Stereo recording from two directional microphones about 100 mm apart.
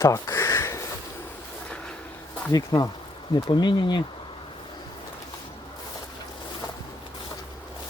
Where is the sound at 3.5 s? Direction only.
55° left (ahead or behind).